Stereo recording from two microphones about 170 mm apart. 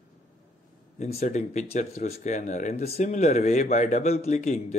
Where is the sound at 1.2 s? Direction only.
40° left (ahead or behind).